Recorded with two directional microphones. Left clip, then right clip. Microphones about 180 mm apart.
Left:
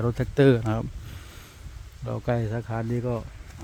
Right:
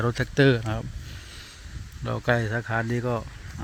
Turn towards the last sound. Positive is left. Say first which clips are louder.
# right 3 dB
turn(degrees=-5)  # may be behind; listen again after turning